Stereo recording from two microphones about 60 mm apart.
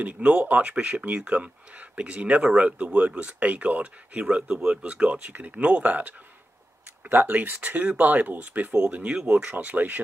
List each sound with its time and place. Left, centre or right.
0.0 s speech: right